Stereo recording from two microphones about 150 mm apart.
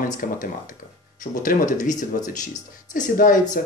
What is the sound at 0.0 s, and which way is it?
Speech, 65° left (ahead or behind).